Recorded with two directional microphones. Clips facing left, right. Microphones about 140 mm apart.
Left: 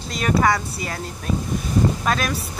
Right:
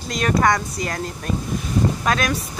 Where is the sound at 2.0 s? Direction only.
Centre (ahead or behind).